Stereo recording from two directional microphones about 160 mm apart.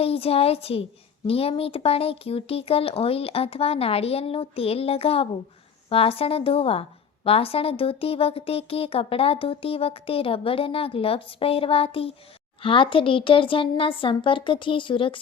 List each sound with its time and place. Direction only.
0.0 s speech: 35° left (ahead or behind)